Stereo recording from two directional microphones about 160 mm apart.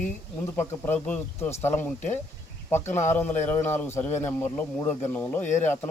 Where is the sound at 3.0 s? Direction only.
15° left (ahead or behind).